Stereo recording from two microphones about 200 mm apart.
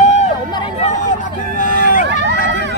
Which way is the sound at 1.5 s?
45° left (ahead or behind).